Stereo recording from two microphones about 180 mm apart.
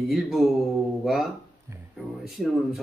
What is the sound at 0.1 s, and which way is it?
A man's voice, centre (ahead or behind).